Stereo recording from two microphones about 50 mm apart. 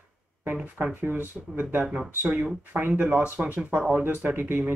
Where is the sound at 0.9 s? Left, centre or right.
Right.